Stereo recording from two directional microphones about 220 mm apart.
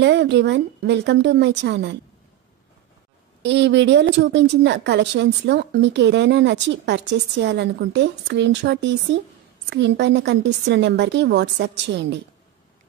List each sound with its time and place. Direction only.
0.0 s speech: 50° right (ahead or behind)
3.4 s speech: 55° right (ahead or behind)